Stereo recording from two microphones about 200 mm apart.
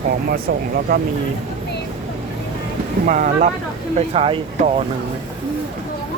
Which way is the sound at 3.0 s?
40° right (ahead or behind).